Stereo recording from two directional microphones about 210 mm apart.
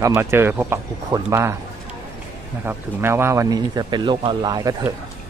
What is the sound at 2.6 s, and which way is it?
Speech, 10° right (ahead or behind).